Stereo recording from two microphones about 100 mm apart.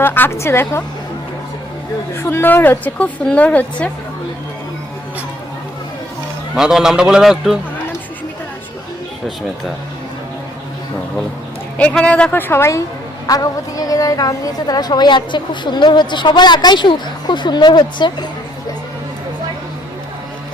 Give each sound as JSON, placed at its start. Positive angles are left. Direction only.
{"t": 0.0, "sound": "a woman's voice", "side_deg": 25}
{"t": 2.1, "sound": "a woman's voice", "side_deg": 25}
{"t": 6.6, "sound": "a man's voice", "side_deg": -5}
{"t": 11.8, "sound": "a woman's voice", "side_deg": 15}
{"t": 13.2, "sound": "a woman's voice", "side_deg": 35}